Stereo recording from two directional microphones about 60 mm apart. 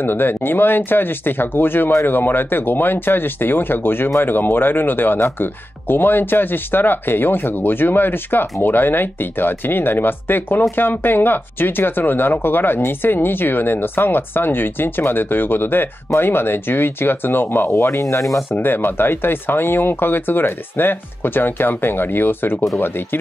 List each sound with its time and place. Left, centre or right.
0.0 s speech: left
17.7 s speech: left
18.5 s speech: left